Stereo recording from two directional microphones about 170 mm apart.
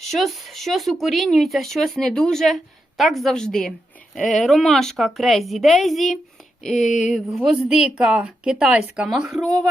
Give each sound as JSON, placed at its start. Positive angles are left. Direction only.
{"t": 0.0, "sound": "speech", "side_deg": 0}